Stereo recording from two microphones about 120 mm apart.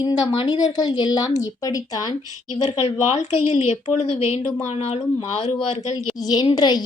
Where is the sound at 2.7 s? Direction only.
60° left (ahead or behind).